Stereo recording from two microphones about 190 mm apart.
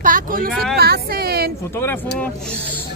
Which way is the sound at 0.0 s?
45° right (ahead or behind).